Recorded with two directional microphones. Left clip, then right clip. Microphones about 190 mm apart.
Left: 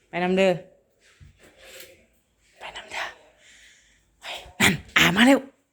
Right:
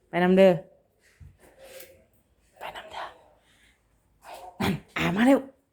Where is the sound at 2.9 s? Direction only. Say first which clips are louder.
Left 10 dB; centre (ahead or behind).